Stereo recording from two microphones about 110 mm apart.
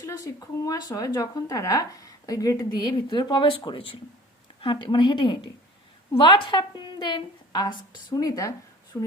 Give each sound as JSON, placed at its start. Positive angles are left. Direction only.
{"t": 0.0, "sound": "speech", "side_deg": 30}
{"t": 3.1, "sound": "a woman's voice", "side_deg": 40}
{"t": 8.1, "sound": "speech", "side_deg": 30}